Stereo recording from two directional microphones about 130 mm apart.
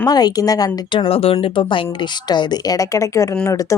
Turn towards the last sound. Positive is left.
turn(degrees=25)  # may be behind; listen again after turning